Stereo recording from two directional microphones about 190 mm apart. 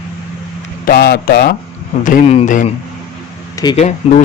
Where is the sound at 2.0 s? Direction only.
40° left (ahead or behind).